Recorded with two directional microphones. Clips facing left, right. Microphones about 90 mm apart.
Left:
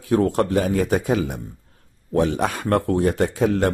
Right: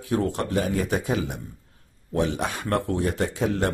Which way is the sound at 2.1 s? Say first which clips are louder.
Left 5 dB; 40° left (ahead or behind).